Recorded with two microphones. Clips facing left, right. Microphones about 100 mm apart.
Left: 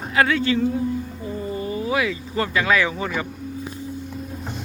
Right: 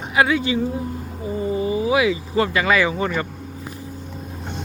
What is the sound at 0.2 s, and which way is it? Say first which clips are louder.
Speech: right 1 dB; 15° right (ahead or behind).